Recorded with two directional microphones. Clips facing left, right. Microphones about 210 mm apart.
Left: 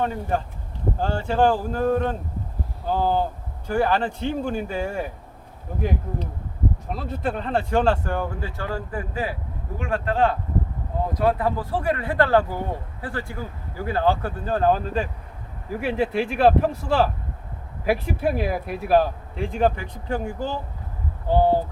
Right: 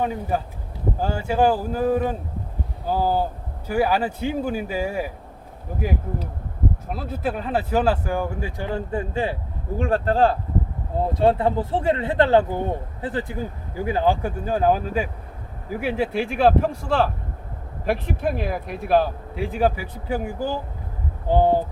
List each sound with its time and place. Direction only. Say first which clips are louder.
0.0 s a man's voice: even; 5° right (ahead or behind)
6.8 s a man's voice: right 1 dB; 5° right (ahead or behind)